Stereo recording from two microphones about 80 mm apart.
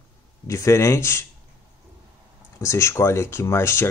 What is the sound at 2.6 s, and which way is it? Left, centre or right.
Speech, left.